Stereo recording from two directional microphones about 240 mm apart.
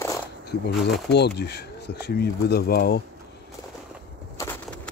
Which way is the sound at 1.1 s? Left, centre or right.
Left.